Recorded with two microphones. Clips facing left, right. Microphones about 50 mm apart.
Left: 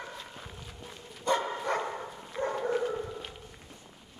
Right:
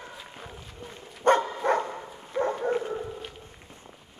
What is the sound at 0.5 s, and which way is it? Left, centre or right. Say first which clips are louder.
Run: right 2 dB; centre.